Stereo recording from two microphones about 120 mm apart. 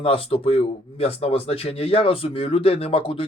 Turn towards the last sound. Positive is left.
turn(degrees=50)  # may be behind; listen again after turning